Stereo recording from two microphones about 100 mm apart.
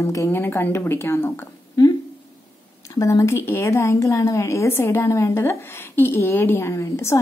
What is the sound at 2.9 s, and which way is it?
A woman's voice, 35° left (ahead or behind).